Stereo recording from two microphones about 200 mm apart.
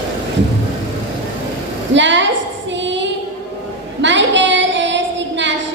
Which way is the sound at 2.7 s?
65° right (ahead or behind).